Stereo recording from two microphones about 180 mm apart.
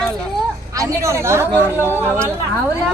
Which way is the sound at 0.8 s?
15° right (ahead or behind).